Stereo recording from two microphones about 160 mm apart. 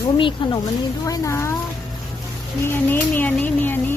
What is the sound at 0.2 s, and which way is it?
Speech, 30° left (ahead or behind).